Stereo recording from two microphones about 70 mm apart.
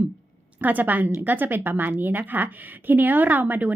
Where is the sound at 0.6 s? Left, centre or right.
Right.